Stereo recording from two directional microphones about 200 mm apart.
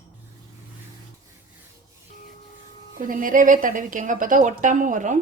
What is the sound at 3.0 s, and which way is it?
A woman's voice, 45° right (ahead or behind).